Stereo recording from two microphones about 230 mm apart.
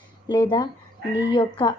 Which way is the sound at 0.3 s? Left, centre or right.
Centre.